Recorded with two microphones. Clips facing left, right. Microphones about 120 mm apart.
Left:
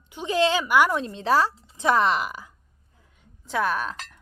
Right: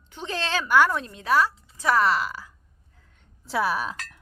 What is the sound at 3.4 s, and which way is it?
Speech, 5° right (ahead or behind).